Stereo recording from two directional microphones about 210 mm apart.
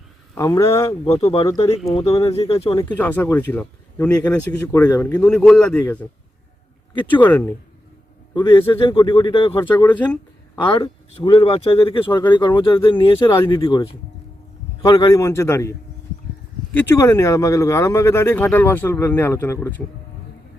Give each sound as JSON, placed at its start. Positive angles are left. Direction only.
{"t": 0.3, "sound": "speech", "side_deg": 15}
{"t": 1.0, "sound": "speech", "side_deg": 25}
{"t": 2.7, "sound": "a man's voice", "side_deg": 10}
{"t": 7.2, "sound": "speech", "side_deg": 10}
{"t": 8.4, "sound": "speech", "side_deg": 20}
{"t": 9.8, "sound": "speech", "side_deg": 5}
{"t": 10.7, "sound": "speech", "side_deg": 20}
{"t": 16.7, "sound": "speech", "side_deg": 10}